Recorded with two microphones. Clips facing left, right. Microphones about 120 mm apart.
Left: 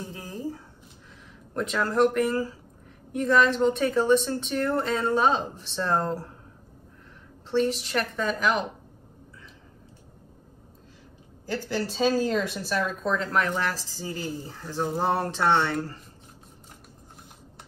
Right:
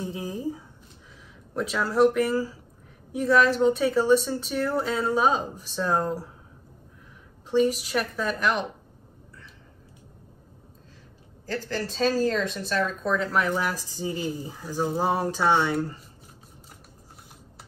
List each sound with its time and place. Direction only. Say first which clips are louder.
0.0 s a sound: right 4 dB; 15° right (ahead or behind)
1.5 s speech: even; 5° right (ahead or behind)
7.5 s speech: right 2 dB; 5° right (ahead or behind)
11.4 s speech: left 1 dB; 10° left (ahead or behind)
13.5 s speech: right 1 dB; 15° right (ahead or behind)